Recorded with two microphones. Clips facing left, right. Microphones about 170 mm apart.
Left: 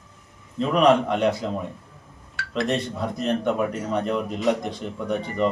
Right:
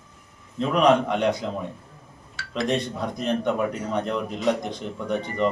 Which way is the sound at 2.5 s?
5° left (ahead or behind).